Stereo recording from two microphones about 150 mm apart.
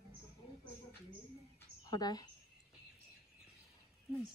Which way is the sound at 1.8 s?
25° left (ahead or behind).